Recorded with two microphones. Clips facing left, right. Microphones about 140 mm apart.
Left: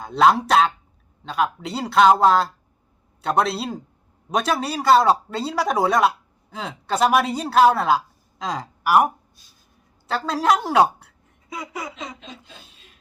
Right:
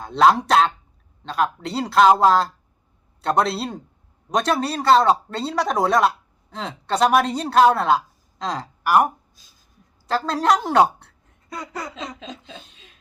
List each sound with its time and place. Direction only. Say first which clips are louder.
0.0 s speech: right 1 dB; centre (ahead or behind)
9.4 s a sound: even; 90° right
10.1 s a woman's voice: right 1 dB; centre (ahead or behind)